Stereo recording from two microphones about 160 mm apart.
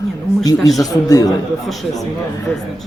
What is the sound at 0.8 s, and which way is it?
Speech, 25° left (ahead or behind).